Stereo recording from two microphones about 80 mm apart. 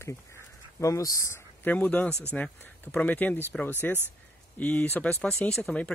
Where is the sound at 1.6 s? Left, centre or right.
Centre.